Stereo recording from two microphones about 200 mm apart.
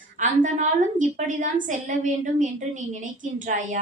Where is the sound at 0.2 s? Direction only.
40° right (ahead or behind).